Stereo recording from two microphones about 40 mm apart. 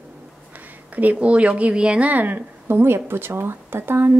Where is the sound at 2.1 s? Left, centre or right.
Right.